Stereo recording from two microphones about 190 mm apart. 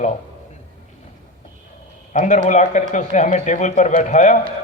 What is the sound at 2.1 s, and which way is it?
A man's voice, 40° left (ahead or behind).